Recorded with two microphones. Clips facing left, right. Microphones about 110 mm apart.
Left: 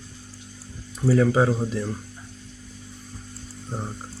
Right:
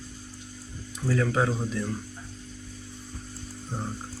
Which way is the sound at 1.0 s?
10° left (ahead or behind).